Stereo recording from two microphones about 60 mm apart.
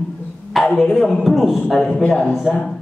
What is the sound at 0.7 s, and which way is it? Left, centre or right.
A man's voice, centre.